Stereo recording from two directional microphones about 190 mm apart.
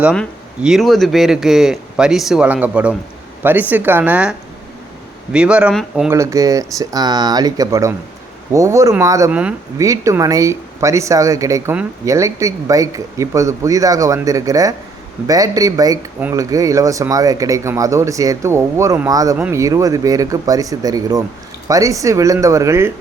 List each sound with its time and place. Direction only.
0.0 s speech: centre (ahead or behind)
6.1 s speech: 15° right (ahead or behind)